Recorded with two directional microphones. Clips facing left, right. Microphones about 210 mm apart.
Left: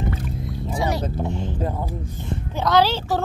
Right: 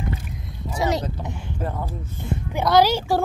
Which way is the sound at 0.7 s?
20° right (ahead or behind).